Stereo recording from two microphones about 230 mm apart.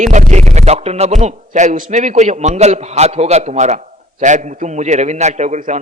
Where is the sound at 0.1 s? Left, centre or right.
Right.